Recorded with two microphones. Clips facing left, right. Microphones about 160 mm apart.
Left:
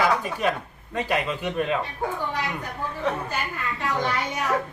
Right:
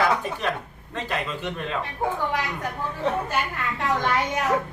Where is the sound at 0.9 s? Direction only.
10° left (ahead or behind).